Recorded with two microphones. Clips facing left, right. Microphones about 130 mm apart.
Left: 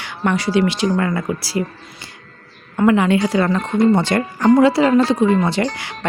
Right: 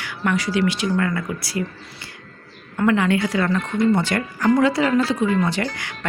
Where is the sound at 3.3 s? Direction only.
30° left (ahead or behind).